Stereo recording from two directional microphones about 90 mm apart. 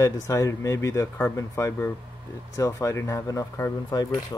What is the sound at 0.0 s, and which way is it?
Speech, 35° left (ahead or behind).